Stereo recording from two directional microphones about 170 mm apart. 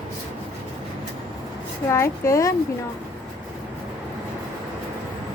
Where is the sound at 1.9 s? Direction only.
15° left (ahead or behind).